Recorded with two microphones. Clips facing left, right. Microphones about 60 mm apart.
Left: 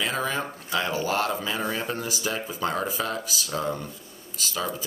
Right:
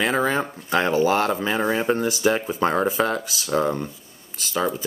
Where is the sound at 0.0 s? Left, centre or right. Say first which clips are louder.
Right 6 dB; right.